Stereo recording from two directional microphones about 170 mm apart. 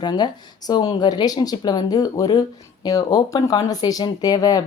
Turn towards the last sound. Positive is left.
turn(degrees=20)  # may be behind; listen again after turning